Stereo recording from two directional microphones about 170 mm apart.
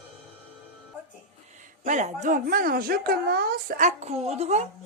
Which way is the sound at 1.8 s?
45° right (ahead or behind).